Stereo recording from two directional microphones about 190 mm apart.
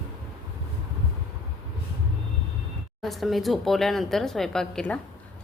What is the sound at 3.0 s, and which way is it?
A woman's voice, centre (ahead or behind).